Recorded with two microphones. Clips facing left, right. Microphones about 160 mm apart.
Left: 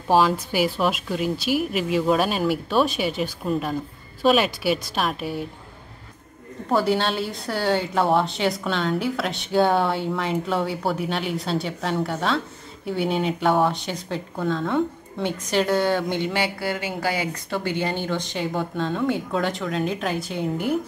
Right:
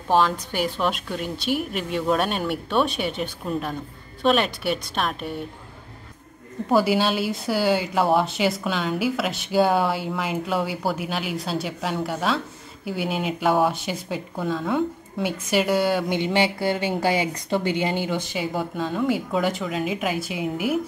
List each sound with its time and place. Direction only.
0.1 s a woman's voice: 5° left (ahead or behind)
6.7 s a woman's voice: 5° right (ahead or behind)
16.2 s a woman's voice: 20° right (ahead or behind)